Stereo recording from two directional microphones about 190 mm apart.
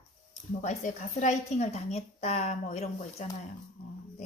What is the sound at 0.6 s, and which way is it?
A woman's voice, 40° left (ahead or behind).